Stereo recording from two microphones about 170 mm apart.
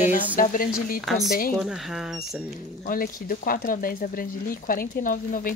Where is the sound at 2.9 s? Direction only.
55° left (ahead or behind).